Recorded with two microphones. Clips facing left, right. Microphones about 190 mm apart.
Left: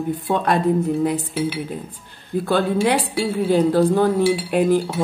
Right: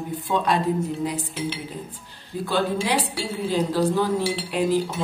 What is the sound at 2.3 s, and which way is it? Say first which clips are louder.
A woman's voice: left 5 dB; 55° left (ahead or behind).